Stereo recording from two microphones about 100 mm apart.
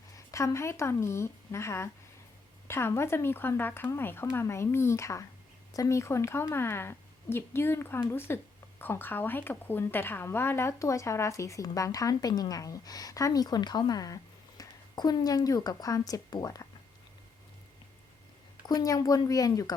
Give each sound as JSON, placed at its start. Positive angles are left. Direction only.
{"t": 0.3, "sound": "a woman's voice", "side_deg": 30}
{"t": 18.6, "sound": "a woman's voice", "side_deg": 40}